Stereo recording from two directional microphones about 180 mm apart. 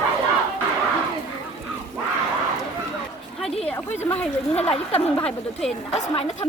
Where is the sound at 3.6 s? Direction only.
10° left (ahead or behind).